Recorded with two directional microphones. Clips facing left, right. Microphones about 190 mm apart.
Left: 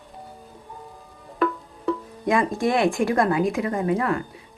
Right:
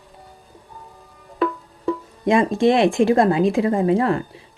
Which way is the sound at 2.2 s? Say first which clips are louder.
Right 5 dB; 25° right (ahead or behind).